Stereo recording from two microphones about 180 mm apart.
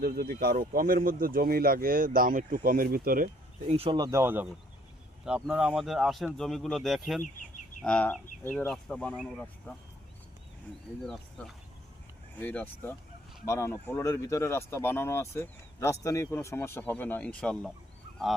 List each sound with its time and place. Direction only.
0.0 s speech: 55° right (ahead or behind)
3.7 s speech: 30° right (ahead or behind); by 9.7 s centre (ahead or behind)
11.0 s speech: centre (ahead or behind)